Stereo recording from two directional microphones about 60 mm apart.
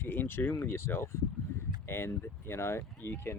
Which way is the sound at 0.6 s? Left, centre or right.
Left.